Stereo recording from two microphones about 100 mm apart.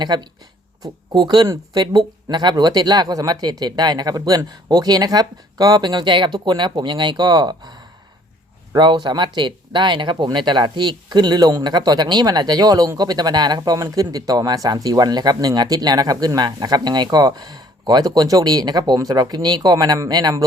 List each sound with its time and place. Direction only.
0.0 s speech: 45° right (ahead or behind)